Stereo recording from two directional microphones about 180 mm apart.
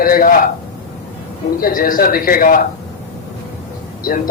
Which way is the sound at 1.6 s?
50° left (ahead or behind).